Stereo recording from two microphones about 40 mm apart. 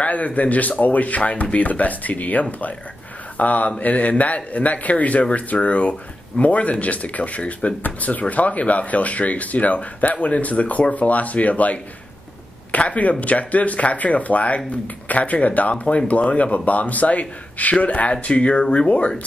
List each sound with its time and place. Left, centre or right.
0.0 s speech: left